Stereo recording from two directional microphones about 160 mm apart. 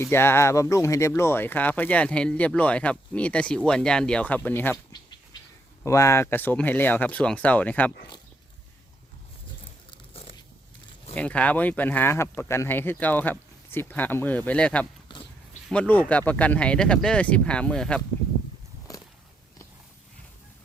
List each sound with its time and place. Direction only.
0.0 s speech: 15° left (ahead or behind)
5.8 s speech: 20° left (ahead or behind)
11.1 s speech: 10° left (ahead or behind)
18.9 s a sound: 20° left (ahead or behind)